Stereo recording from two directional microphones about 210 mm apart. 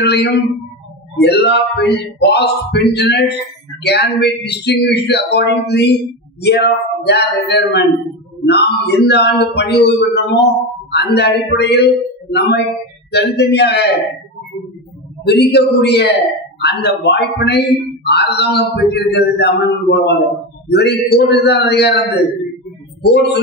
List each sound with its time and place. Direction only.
0.0 s speech: 55° left (ahead or behind)
15.2 s speech: 55° left (ahead or behind)
23.0 s speech: 55° left (ahead or behind)